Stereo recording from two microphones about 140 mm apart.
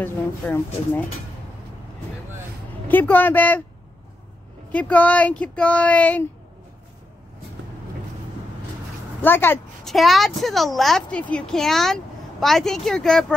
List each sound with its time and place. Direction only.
0.0 s speech: 15° left (ahead or behind)
2.9 s speech: 15° left (ahead or behind)
4.7 s speech: 10° left (ahead or behind)
9.2 s speech: 15° left (ahead or behind)
9.8 s a woman's voice: centre (ahead or behind)